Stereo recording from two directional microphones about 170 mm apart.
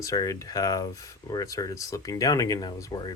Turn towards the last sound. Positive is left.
turn(degrees=20)  # may be behind; listen again after turning